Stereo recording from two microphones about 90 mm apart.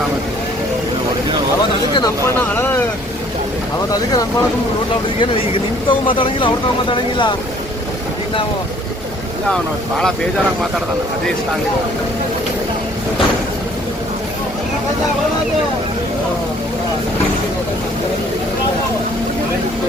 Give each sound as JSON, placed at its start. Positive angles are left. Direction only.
{"t": 5.9, "sound": "speech", "side_deg": 75}
{"t": 6.9, "sound": "speech", "side_deg": 65}